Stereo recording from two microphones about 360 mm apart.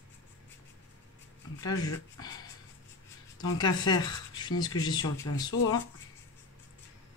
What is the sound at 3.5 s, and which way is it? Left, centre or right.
Speech, centre.